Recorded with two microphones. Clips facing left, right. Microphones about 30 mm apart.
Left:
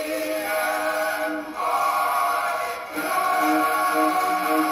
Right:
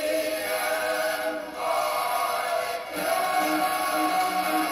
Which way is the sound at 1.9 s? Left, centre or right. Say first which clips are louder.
Left 4 dB; left.